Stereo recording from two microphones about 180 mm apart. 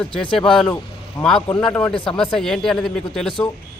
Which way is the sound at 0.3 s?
Centre (ahead or behind).